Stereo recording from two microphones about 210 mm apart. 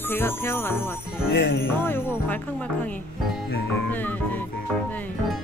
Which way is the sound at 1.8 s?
10° left (ahead or behind).